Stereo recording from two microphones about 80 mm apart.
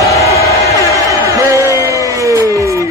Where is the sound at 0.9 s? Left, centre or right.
Right.